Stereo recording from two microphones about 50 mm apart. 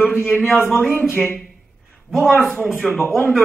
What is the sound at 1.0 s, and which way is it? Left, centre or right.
Speech, left.